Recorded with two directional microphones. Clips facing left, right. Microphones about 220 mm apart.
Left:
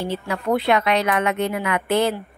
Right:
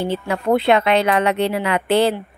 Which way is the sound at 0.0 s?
25° right (ahead or behind).